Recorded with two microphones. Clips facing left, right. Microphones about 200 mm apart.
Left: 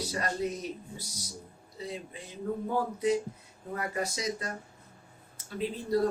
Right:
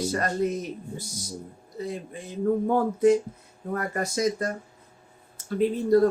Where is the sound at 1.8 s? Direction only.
50° right (ahead or behind).